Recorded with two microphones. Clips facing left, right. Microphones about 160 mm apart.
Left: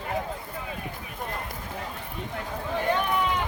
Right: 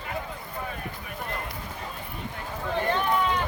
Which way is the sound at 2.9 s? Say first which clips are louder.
Even; 15° left (ahead or behind).